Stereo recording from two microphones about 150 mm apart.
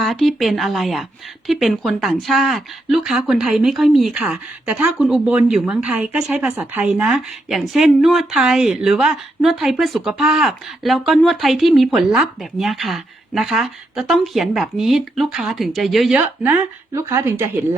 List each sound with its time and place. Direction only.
0.0 s a woman's voice: centre (ahead or behind)
16.4 s a woman's voice: 15° right (ahead or behind)